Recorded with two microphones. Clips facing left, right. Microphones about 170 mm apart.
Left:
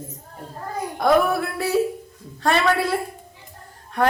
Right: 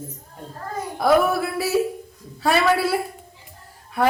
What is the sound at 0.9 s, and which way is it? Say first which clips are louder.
A woman's voice: even; centre (ahead or behind).